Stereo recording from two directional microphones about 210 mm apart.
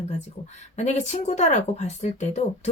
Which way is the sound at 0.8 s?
35° left (ahead or behind).